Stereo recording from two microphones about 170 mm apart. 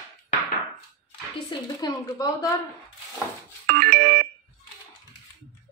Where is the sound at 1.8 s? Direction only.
20° left (ahead or behind).